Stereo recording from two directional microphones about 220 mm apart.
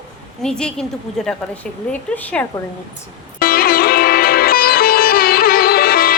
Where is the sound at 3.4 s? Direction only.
40° left (ahead or behind).